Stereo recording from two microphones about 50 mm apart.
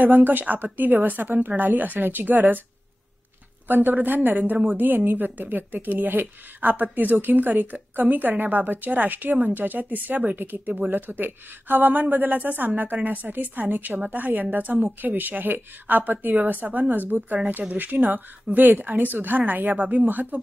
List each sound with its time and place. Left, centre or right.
0.0 s speech: right
3.6 s speech: right